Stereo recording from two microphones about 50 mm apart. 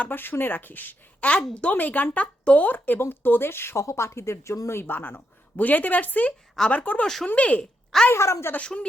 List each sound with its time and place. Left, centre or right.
0.0 s speech: left
1.2 s speech: left
2.6 s speech: left
8.1 s a woman's voice: left
8.6 s speech: left